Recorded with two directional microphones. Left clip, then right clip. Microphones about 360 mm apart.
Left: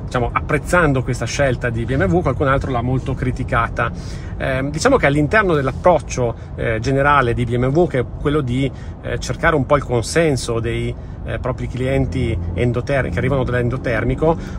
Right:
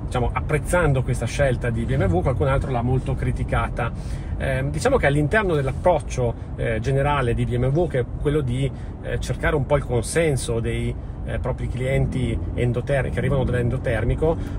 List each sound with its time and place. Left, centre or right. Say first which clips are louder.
0.1 s speech: left 5 dB; centre